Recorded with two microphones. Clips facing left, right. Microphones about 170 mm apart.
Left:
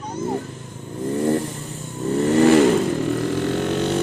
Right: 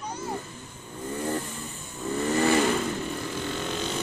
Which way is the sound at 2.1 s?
70° left (ahead or behind).